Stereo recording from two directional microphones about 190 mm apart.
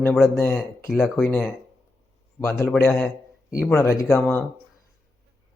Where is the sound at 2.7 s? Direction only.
10° left (ahead or behind).